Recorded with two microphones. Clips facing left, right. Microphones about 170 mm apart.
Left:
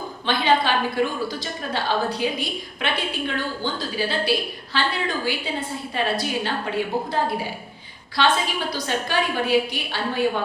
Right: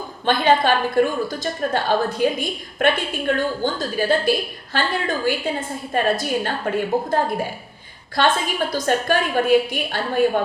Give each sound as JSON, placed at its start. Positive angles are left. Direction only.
{"t": 0.3, "sound": "a woman's voice", "side_deg": -50}
{"t": 8.2, "sound": "a woman's voice", "side_deg": -50}